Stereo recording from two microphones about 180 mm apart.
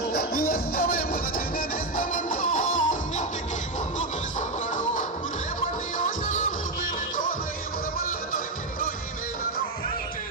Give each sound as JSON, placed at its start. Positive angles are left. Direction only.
{"t": 0.1, "sound": "music", "side_deg": 55}
{"t": 6.1, "sound": "music", "side_deg": 45}
{"t": 7.9, "sound": "music", "side_deg": 50}